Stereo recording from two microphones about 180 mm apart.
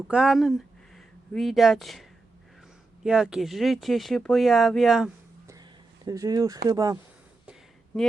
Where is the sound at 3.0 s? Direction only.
5° right (ahead or behind).